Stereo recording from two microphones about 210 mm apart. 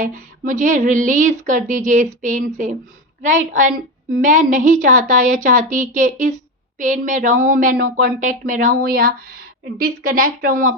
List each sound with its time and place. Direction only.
0.0 s a woman's voice: 40° right (ahead or behind)